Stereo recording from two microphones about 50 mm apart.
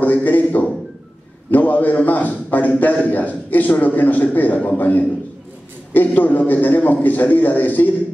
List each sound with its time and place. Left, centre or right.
0.0 s a man's voice: left